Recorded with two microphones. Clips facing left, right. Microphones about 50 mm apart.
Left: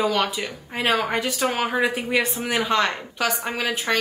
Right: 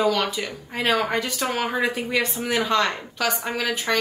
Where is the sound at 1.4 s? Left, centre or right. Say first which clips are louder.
Left 3 dB; left.